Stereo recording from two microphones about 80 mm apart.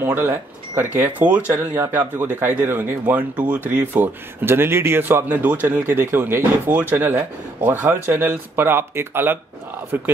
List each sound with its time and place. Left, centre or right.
0.0 s speech: right
3.8 s speech: right